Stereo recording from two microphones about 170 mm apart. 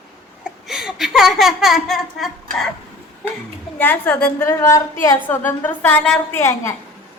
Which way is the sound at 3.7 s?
10° left (ahead or behind).